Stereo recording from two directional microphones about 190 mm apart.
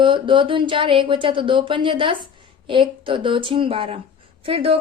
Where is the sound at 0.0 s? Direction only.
25° right (ahead or behind).